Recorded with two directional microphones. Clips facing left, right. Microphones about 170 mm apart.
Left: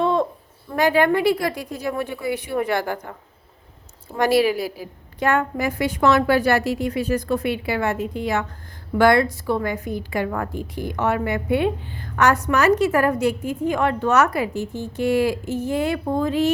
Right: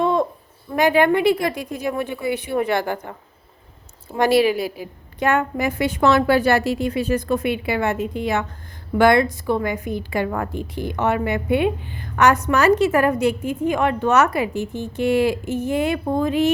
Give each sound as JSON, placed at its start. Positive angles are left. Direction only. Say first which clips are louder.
{"t": 0.0, "sound": "a sound", "louder": "right 1 dB", "side_deg": -15}
{"t": 0.8, "sound": "a woman's voice", "louder": "right 1 dB", "side_deg": -20}
{"t": 4.2, "sound": "a woman's voice", "louder": "right 1 dB", "side_deg": -25}